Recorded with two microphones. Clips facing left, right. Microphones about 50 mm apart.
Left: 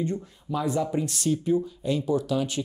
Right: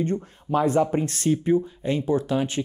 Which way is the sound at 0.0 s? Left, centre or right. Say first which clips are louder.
Right 4 dB; right.